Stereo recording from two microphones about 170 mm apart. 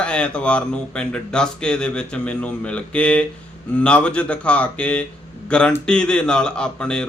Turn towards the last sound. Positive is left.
turn(degrees=5)  # may be behind; listen again after turning